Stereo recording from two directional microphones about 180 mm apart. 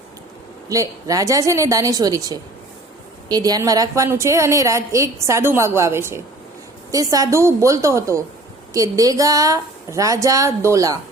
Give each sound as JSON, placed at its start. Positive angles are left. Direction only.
{"t": 0.7, "sound": "a woman's voice", "side_deg": -20}